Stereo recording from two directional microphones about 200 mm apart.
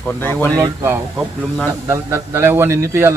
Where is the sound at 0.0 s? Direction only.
10° left (ahead or behind).